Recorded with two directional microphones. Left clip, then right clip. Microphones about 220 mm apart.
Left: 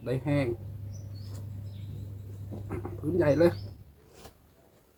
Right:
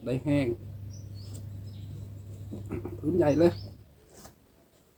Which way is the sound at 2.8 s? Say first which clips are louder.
Even; 15° right (ahead or behind).